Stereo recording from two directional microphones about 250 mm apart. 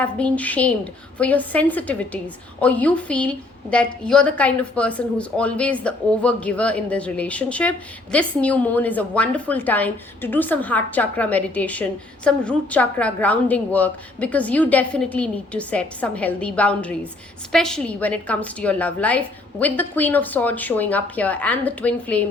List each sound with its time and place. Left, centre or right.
0.0 s a woman's voice: centre